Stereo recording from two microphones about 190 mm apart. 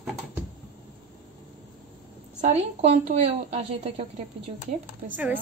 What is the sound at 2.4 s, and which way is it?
A woman's voice, 35° right (ahead or behind).